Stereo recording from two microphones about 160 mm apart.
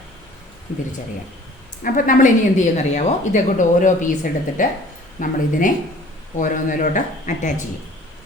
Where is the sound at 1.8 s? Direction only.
55° left (ahead or behind).